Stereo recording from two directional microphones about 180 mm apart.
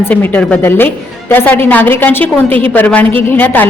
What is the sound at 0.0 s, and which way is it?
A woman's voice, 10° left (ahead or behind).